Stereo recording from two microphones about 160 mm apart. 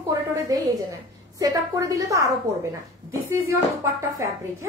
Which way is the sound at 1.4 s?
20° right (ahead or behind).